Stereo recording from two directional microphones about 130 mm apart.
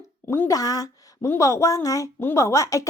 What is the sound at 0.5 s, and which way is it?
Speech, 30° left (ahead or behind).